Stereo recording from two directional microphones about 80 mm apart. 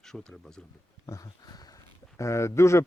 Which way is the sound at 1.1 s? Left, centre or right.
Left.